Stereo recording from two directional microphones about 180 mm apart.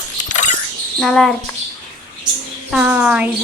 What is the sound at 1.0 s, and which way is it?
Speech, centre (ahead or behind).